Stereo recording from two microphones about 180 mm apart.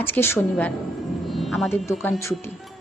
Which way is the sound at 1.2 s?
Centre (ahead or behind).